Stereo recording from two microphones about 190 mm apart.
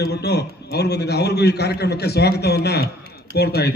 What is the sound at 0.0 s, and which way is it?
A man's voice, 60° left (ahead or behind).